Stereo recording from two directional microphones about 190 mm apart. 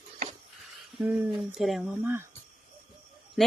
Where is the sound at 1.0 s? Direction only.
5° right (ahead or behind).